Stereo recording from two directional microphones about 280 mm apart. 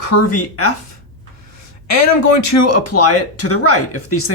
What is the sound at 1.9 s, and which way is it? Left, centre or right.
Speech, left.